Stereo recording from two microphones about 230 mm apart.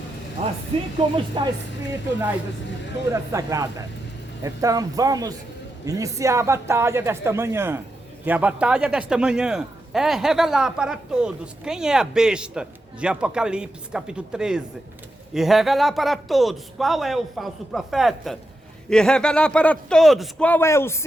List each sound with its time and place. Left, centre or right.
0.7 s speech: right
3.1 s a man's voice: centre